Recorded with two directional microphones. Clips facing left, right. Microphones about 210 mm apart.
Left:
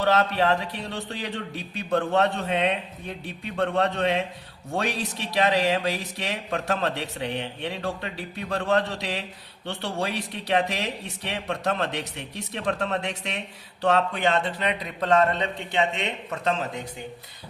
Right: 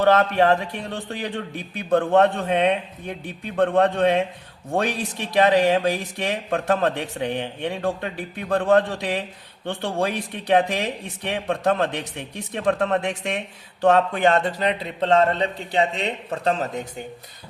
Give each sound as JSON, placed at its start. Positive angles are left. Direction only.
{"t": 0.0, "sound": "a man's voice", "side_deg": -50}